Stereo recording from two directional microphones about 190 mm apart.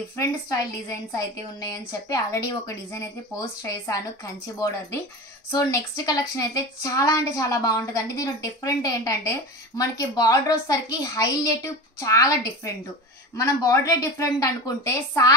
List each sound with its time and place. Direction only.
0.2 s a woman's voice: 20° left (ahead or behind)
5.5 s a woman's voice: 20° left (ahead or behind)